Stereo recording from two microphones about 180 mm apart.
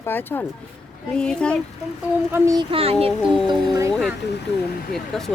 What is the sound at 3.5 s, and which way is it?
Speech, 20° right (ahead or behind).